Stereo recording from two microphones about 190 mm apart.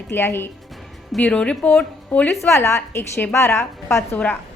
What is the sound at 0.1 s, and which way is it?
A woman's voice, 10° left (ahead or behind).